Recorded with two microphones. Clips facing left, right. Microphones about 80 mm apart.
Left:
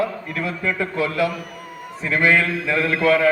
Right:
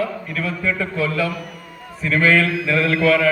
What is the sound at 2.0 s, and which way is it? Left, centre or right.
A man's voice, centre.